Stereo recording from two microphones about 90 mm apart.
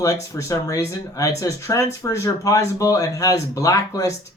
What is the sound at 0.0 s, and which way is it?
Speech, 40° left (ahead or behind).